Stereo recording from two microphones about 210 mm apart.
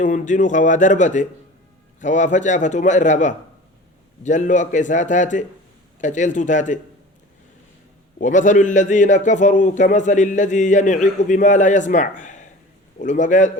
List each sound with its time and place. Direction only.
0.0 s a man's voice: 35° left (ahead or behind)
8.2 s a man's voice: 35° left (ahead or behind)